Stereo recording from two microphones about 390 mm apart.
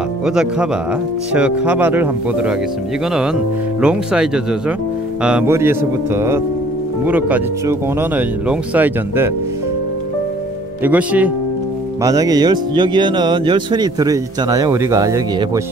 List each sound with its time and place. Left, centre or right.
0.2 s speech: centre
10.8 s speech: centre